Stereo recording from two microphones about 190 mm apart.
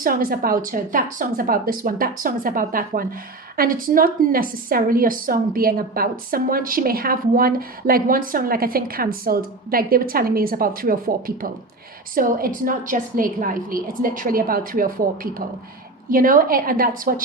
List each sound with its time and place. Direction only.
0.0 s a woman's voice: 50° right (ahead or behind)